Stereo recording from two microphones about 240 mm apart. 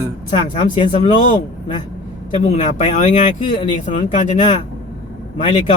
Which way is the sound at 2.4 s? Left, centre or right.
Left.